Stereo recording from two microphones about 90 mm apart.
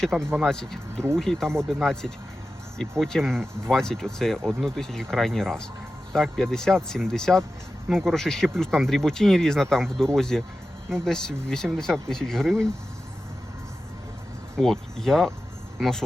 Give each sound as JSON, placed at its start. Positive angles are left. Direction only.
{"t": 0.1, "sound": "speech", "side_deg": -5}
{"t": 0.4, "sound": "speech", "side_deg": 5}
{"t": 14.5, "sound": "speech", "side_deg": 5}